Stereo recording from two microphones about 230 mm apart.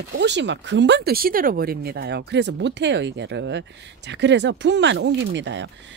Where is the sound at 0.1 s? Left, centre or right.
Right.